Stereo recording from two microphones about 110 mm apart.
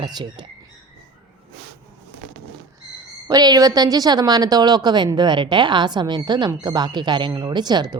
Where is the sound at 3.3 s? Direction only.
35° right (ahead or behind).